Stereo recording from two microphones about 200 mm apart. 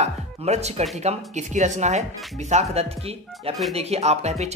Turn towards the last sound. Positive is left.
turn(degrees=-35)  # may be behind; listen again after turning